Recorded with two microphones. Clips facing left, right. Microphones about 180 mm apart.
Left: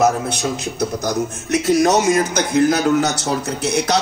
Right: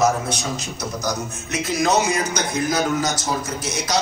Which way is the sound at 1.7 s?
45° left (ahead or behind).